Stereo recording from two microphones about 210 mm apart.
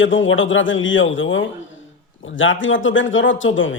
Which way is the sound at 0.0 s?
65° left (ahead or behind).